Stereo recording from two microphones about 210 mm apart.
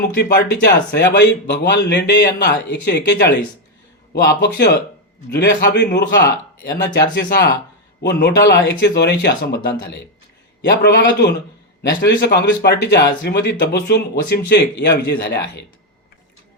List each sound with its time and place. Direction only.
0.9 s a man's voice: 55° left (ahead or behind)